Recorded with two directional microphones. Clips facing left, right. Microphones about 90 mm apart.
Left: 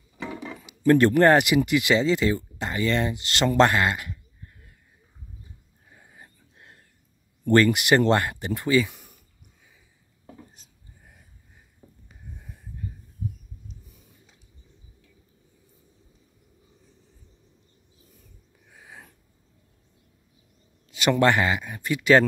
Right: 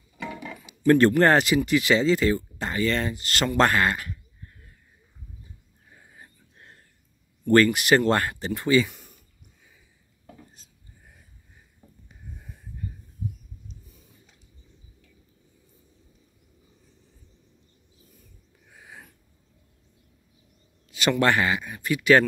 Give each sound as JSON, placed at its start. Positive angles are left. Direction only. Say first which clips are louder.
{"t": 0.2, "sound": "music", "louder": "left 1 dB", "side_deg": 25}
{"t": 0.8, "sound": "speech", "louder": "left 1 dB", "side_deg": 15}
{"t": 7.4, "sound": "speech", "louder": "even", "side_deg": 20}
{"t": 10.2, "sound": "a sound", "louder": "left 2 dB", "side_deg": 20}
{"t": 18.8, "sound": "a sound", "louder": "even", "side_deg": 15}
{"t": 20.9, "sound": "speech", "louder": "left 2 dB", "side_deg": 20}